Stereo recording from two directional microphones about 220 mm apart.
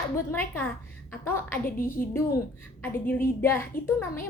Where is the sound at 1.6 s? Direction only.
40° left (ahead or behind).